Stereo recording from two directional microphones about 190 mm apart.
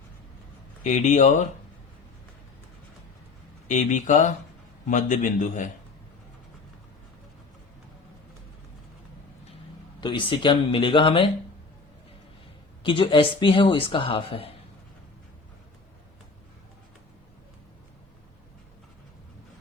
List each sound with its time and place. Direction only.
0.9 s a man's voice: 40° left (ahead or behind)
3.7 s a man's voice: 40° left (ahead or behind)
10.0 s speech: 25° left (ahead or behind)
12.8 s speech: 25° left (ahead or behind)